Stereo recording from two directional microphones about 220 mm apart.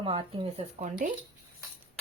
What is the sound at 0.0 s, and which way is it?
Speech, 25° right (ahead or behind).